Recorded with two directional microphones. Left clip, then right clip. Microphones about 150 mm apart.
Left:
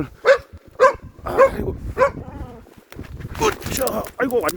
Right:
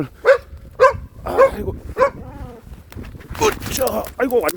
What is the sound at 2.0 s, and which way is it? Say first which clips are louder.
Dog: right 1 dB; 65° right (ahead or behind).